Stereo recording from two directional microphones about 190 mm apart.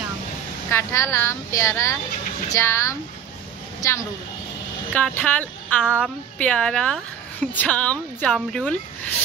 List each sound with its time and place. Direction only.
0.7 s a woman's voice: 15° left (ahead or behind)